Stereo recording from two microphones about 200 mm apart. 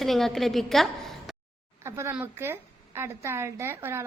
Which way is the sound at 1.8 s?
15° right (ahead or behind).